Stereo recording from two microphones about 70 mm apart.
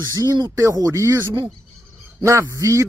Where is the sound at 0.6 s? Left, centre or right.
Right.